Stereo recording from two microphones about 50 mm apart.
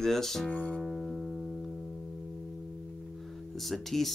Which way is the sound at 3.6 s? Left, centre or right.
Centre.